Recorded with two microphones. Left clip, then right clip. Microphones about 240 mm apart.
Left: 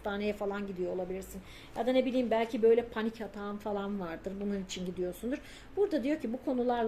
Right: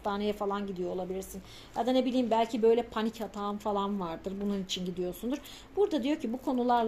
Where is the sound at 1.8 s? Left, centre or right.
Right.